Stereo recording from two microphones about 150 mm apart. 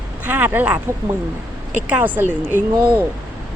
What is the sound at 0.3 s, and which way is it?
Speech, 10° right (ahead or behind).